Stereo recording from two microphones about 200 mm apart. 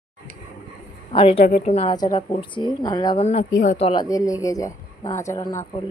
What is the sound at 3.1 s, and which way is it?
A woman's voice, 35° left (ahead or behind).